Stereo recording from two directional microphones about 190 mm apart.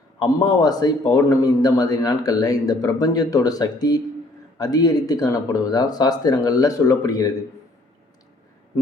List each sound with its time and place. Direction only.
0.2 s a man's voice: 20° left (ahead or behind)